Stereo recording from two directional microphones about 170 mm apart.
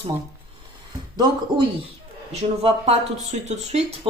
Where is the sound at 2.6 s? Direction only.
40° right (ahead or behind).